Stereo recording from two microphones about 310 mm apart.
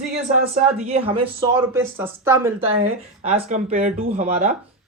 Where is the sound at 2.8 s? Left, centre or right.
Right.